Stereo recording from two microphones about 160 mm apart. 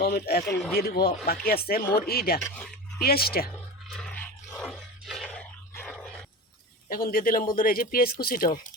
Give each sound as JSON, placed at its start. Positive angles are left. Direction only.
{"t": 0.0, "sound": "speech", "side_deg": 75}
{"t": 2.4, "sound": "dog", "side_deg": 10}
{"t": 3.0, "sound": "speech", "side_deg": 75}
{"t": 3.8, "sound": "a sound", "side_deg": 5}
{"t": 6.8, "sound": "speech", "side_deg": 65}